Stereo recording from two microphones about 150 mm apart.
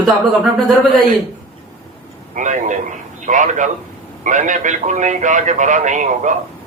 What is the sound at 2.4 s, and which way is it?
A man's voice, 55° right (ahead or behind).